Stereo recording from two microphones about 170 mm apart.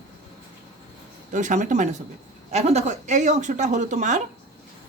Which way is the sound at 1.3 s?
45° right (ahead or behind).